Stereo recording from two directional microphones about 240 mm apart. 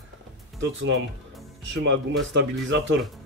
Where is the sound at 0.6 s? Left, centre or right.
Right.